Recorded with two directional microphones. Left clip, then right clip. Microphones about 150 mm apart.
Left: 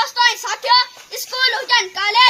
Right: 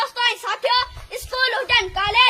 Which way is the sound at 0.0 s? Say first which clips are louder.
Left 5 dB; 50° right (ahead or behind).